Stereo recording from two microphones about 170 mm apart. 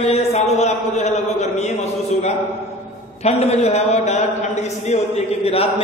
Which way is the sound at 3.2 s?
40° left (ahead or behind).